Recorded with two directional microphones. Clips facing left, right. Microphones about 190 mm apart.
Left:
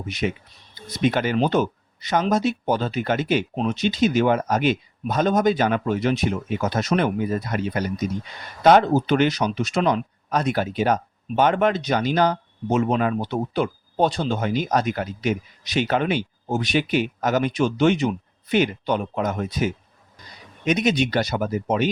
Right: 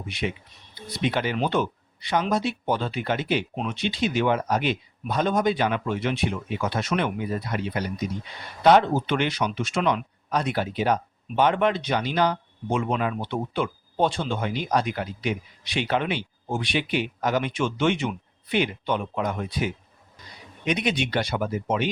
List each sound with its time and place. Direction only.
0.1 s speech: 45° left (ahead or behind)